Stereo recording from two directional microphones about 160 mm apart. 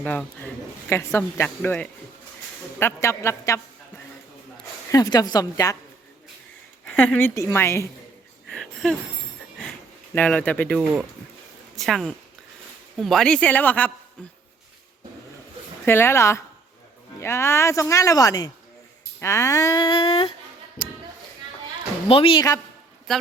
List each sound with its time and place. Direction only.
0.0 s a woman's voice: 10° left (ahead or behind)
4.9 s speech: 20° left (ahead or behind)
6.8 s a woman's voice: 10° left (ahead or behind)
8.4 s a sound: centre (ahead or behind)
10.2 s a woman's voice: 10° left (ahead or behind)
11.8 s a woman's voice: centre (ahead or behind)
15.9 s a woman's voice: 15° left (ahead or behind); by 20.3 s 35° left (ahead or behind)
22.1 s speech: 35° left (ahead or behind)